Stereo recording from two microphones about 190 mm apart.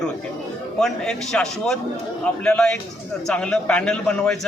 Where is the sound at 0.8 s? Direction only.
5° left (ahead or behind).